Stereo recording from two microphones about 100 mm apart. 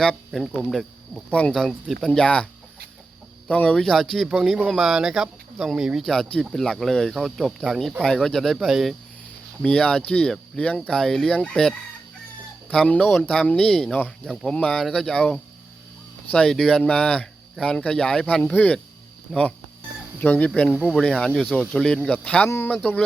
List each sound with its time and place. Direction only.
0.3 s speech: centre (ahead or behind)
1.3 s speech: 10° left (ahead or behind)
3.5 s speech: 10° left (ahead or behind)
12.7 s speech: 10° left (ahead or behind)
13.0 s speech: centre (ahead or behind)
13.2 s speech: 10° left (ahead or behind)
22.4 s speech: 25° left (ahead or behind)
22.7 s speech: 15° left (ahead or behind)